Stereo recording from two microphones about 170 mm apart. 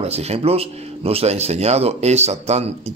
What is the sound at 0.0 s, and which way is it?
Speech, 40° right (ahead or behind).